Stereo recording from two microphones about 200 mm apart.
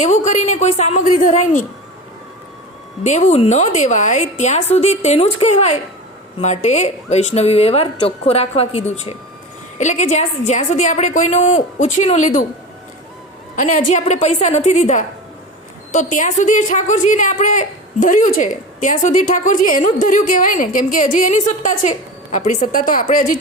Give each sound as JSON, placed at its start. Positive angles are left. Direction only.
{"t": 0.0, "sound": "a woman's voice", "side_deg": 35}
{"t": 3.0, "sound": "a woman's voice", "side_deg": 35}
{"t": 13.6, "sound": "a woman's voice", "side_deg": 40}